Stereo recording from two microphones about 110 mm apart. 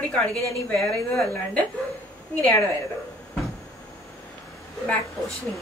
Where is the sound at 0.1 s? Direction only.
5° left (ahead or behind).